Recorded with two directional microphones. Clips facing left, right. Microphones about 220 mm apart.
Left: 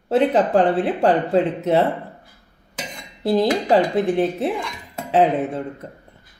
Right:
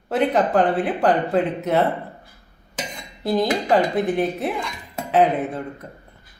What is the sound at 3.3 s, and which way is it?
A woman's voice, 30° left (ahead or behind).